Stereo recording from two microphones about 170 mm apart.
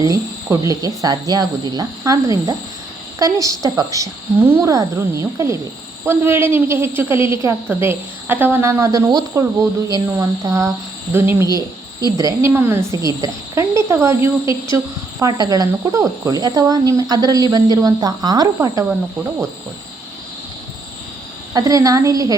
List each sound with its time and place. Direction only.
0.5 s a woman's voice: 20° right (ahead or behind)
21.5 s speech: 20° right (ahead or behind)